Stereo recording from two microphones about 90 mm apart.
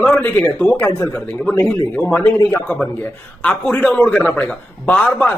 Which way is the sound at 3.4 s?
15° left (ahead or behind).